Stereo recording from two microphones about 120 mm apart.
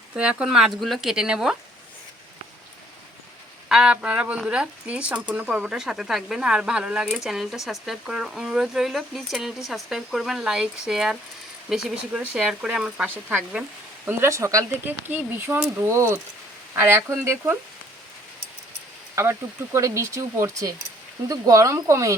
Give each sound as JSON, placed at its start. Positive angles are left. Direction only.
{"t": 0.2, "sound": "speech", "side_deg": -10}
{"t": 3.7, "sound": "speech", "side_deg": -5}
{"t": 19.1, "sound": "speech", "side_deg": -20}